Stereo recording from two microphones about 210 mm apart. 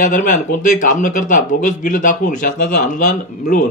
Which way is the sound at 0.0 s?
40° left (ahead or behind).